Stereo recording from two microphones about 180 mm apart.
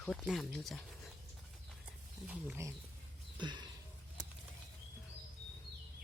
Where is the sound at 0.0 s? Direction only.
5° left (ahead or behind).